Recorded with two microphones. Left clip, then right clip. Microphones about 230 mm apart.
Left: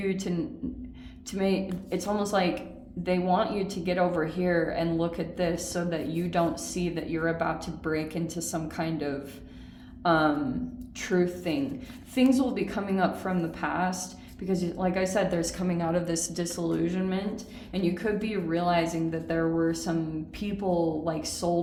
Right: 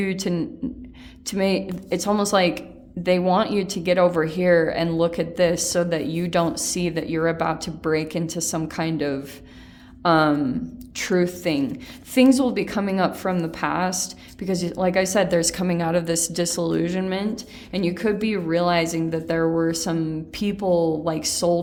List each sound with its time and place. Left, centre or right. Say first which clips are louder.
0.0 s a woman's voice: right 5 dB; right